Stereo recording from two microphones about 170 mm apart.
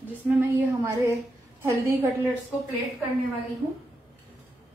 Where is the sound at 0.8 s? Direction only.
15° right (ahead or behind).